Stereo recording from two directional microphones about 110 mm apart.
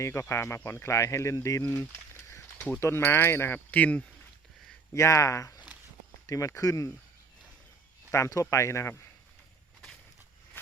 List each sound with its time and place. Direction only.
0.0 s speech: 25° left (ahead or behind)
1.7 s a sound: 30° left (ahead or behind)
2.8 s speech: 25° left (ahead or behind)
4.9 s speech: 25° left (ahead or behind)
8.1 s speech: 30° left (ahead or behind)